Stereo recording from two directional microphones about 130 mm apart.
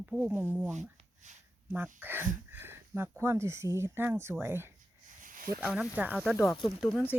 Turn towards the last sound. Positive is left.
turn(degrees=-5)  # may be behind; listen again after turning